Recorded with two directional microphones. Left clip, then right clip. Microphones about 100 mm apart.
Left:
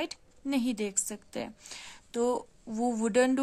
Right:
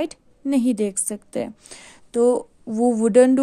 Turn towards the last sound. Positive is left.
turn(degrees=-40)  # may be behind; listen again after turning